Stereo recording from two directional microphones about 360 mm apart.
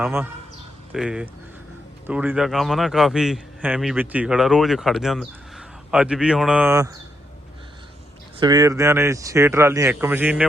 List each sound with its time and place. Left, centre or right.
0.0 s a man's voice: centre
8.4 s speech: centre